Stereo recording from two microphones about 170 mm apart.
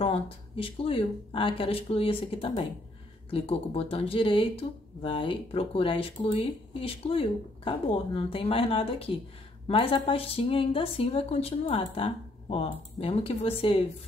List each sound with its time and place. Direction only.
0.0 s speech: 35° left (ahead or behind)